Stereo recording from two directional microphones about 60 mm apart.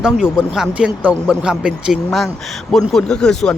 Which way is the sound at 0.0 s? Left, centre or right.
Centre.